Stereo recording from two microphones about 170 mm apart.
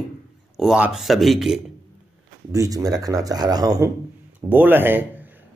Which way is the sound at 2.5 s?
20° right (ahead or behind).